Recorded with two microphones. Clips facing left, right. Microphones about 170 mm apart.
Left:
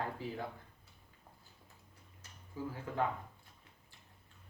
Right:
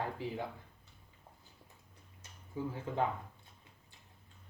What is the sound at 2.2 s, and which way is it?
Speech, 20° right (ahead or behind).